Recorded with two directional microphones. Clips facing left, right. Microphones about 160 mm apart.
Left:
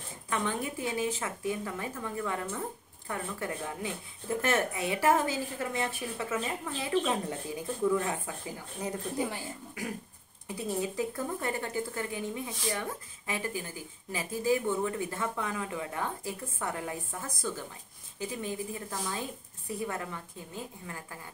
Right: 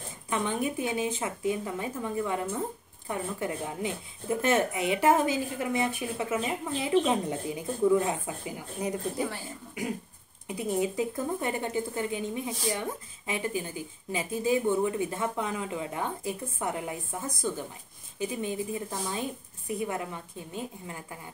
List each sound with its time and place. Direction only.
0.3 s speech: 20° right (ahead or behind)
10.5 s speech: 20° right (ahead or behind)